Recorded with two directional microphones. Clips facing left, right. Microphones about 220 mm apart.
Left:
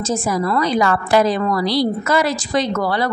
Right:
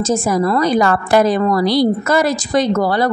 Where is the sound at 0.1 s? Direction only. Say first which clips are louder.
Right 3 dB; 40° right (ahead or behind).